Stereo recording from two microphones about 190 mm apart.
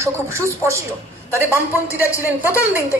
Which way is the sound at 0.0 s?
15° right (ahead or behind).